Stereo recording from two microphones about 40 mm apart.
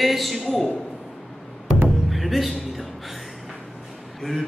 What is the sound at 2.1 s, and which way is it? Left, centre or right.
Music, centre.